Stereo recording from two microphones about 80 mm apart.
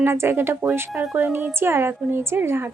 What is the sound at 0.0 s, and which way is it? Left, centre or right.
A woman's voice, right.